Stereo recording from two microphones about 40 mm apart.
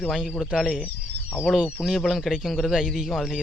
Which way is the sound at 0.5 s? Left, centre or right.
Centre.